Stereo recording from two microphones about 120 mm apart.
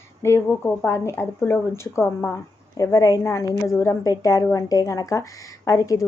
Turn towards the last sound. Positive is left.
turn(degrees=30)  # may be behind; listen again after turning